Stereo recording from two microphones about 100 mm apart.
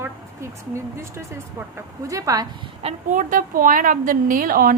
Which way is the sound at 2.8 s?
85° right.